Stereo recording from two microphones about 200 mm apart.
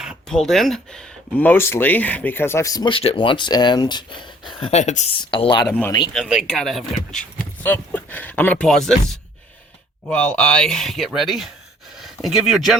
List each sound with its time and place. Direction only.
0.0 s speech: centre (ahead or behind); by 5.0 s 35° left (ahead or behind)
5.2 s speech: 25° left (ahead or behind)
5.6 s speech: 5° left (ahead or behind)